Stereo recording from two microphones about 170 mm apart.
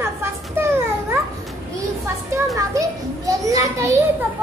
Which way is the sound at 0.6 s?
15° right (ahead or behind).